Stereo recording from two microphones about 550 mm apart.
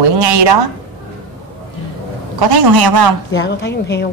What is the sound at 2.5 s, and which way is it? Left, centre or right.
Speech, right.